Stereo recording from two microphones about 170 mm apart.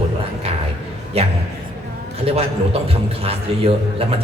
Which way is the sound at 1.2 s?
35° right (ahead or behind).